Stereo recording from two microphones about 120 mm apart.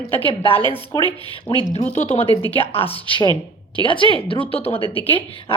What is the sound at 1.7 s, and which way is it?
Speech, 70° left (ahead or behind).